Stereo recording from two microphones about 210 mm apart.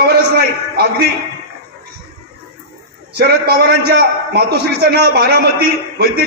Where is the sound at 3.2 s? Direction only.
50° right (ahead or behind).